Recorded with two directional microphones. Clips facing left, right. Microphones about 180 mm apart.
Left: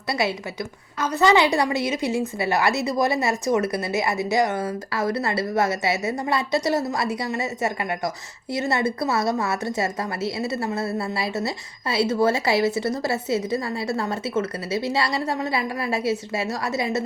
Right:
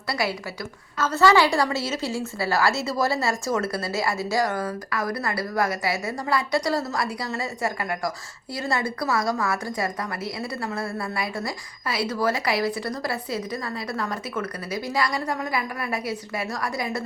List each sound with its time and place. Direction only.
0.1 s a woman's voice: 25° left (ahead or behind)